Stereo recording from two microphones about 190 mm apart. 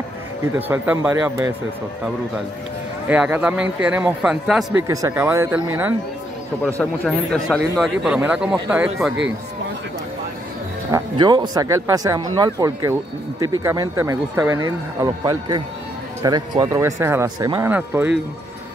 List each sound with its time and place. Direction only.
0.6 s speech: 10° right (ahead or behind)
3.1 s a man's voice: 10° right (ahead or behind)
4.7 s speech: 15° right (ahead or behind)
6.6 s a man's voice: 5° left (ahead or behind)
10.9 s speech: 20° right (ahead or behind)